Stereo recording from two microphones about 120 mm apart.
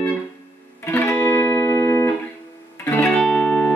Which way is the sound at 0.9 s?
20° left (ahead or behind).